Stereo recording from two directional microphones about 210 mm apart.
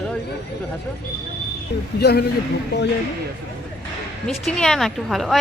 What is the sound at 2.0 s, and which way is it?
Speech, 50° left (ahead or behind).